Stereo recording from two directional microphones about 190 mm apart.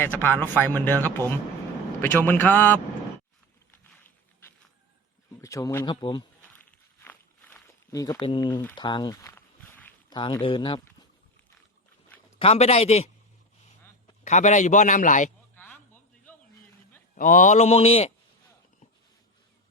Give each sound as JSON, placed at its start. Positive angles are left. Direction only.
{"t": 0.0, "sound": "speech", "side_deg": 10}
{"t": 5.4, "sound": "speech", "side_deg": 15}
{"t": 7.0, "sound": "walk", "side_deg": 10}
{"t": 10.1, "sound": "speech", "side_deg": 25}
{"t": 12.4, "sound": "a man's voice", "side_deg": 30}
{"t": 14.3, "sound": "a man's voice", "side_deg": 40}
{"t": 15.5, "sound": "a sound", "side_deg": 10}
{"t": 17.2, "sound": "a man's voice", "side_deg": 45}